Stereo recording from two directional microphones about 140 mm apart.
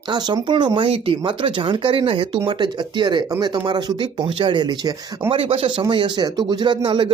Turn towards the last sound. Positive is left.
turn(degrees=-35)  # may be behind; listen again after turning